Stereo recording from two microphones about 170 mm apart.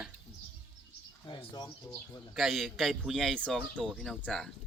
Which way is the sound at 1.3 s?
25° left (ahead or behind).